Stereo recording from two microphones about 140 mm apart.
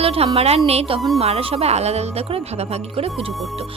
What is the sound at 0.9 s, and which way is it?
Speech, centre (ahead or behind).